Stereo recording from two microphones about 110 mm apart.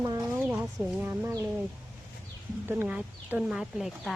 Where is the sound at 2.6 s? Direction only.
20° right (ahead or behind).